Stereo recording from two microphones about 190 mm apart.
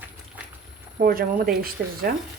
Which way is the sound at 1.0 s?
50° right (ahead or behind).